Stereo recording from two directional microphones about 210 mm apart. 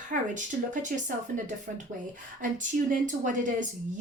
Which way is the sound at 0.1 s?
35° right (ahead or behind).